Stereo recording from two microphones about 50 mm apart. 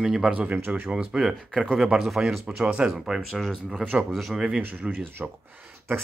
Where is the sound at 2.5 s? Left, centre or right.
Centre.